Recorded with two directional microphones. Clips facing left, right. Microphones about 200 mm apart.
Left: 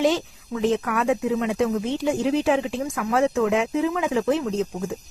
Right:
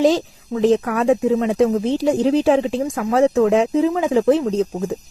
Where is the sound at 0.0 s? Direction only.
35° right (ahead or behind).